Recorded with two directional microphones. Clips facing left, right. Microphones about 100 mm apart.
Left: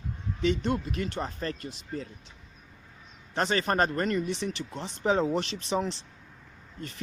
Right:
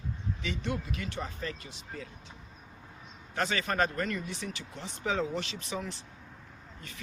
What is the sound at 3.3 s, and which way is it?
Speech, 30° left (ahead or behind).